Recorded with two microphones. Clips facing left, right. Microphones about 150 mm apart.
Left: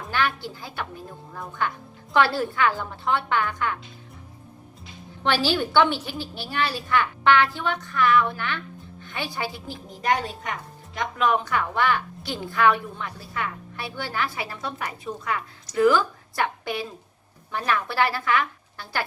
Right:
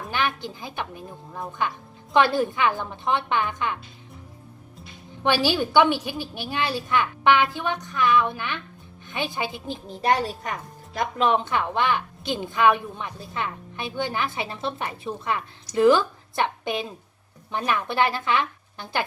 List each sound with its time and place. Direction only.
0.1 s a woman's voice: 20° right (ahead or behind)
5.2 s a woman's voice: 15° right (ahead or behind)